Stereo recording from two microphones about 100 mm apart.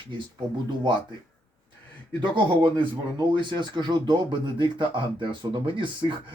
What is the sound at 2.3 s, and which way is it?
Speech, 55° right (ahead or behind).